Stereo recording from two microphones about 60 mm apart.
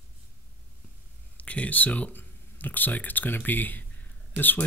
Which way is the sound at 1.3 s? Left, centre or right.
Left.